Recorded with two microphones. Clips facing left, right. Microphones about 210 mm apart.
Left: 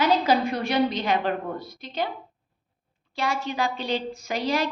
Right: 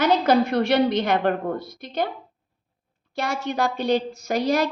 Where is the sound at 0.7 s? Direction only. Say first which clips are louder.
Right 4 dB; 70° right (ahead or behind).